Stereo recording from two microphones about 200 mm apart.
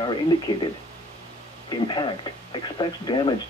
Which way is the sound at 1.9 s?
25° left (ahead or behind).